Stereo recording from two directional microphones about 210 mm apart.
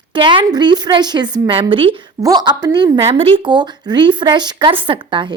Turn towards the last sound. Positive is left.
turn(degrees=-25)  # may be behind; listen again after turning